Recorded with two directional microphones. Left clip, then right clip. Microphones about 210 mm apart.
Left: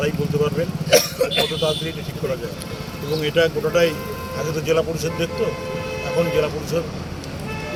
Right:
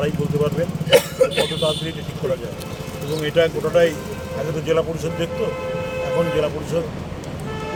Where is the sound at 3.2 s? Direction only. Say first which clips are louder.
Right 1 dB; 10° left (ahead or behind).